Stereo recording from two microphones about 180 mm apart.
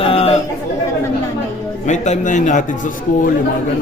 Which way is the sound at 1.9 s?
40° left (ahead or behind).